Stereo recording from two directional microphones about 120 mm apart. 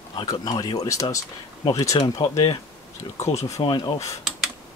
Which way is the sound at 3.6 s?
40° left (ahead or behind).